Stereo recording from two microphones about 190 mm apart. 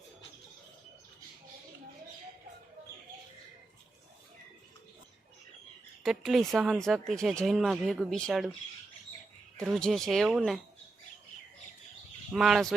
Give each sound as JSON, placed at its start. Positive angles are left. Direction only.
{"t": 6.0, "sound": "speech", "side_deg": 0}
{"t": 9.6, "sound": "speech", "side_deg": 0}
{"t": 12.3, "sound": "speech", "side_deg": 0}